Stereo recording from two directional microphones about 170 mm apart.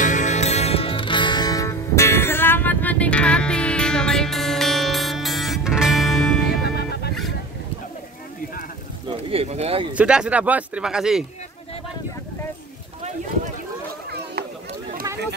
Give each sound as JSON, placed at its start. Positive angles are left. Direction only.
{"t": 0.0, "sound": "music", "side_deg": 45}
{"t": 6.6, "sound": "music", "side_deg": 70}
{"t": 9.1, "sound": "a sound", "side_deg": -35}
{"t": 9.9, "sound": "speech", "side_deg": -5}